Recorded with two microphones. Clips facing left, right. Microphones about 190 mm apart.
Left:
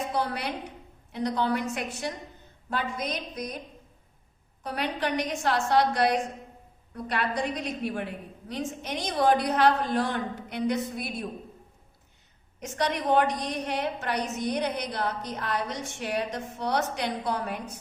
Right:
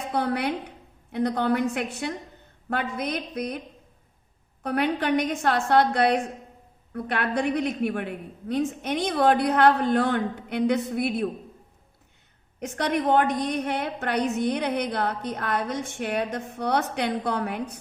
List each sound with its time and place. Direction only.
0.1 s a woman's voice: 55° right (ahead or behind)
4.6 s a woman's voice: 55° right (ahead or behind)
12.5 s a woman's voice: 55° right (ahead or behind)